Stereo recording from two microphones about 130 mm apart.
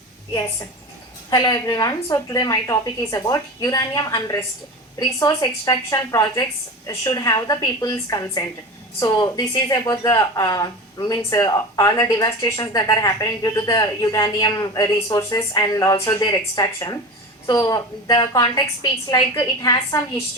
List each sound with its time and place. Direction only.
1.3 s a woman's voice: 30° left (ahead or behind)